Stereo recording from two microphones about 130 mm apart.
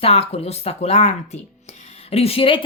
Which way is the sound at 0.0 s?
50° left (ahead or behind).